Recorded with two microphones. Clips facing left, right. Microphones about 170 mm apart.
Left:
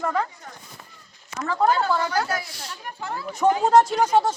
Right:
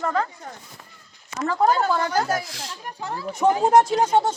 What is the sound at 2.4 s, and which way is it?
Speech, 90° right.